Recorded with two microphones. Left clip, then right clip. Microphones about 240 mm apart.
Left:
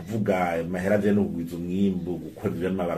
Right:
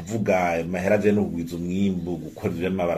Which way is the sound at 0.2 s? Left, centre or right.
Right.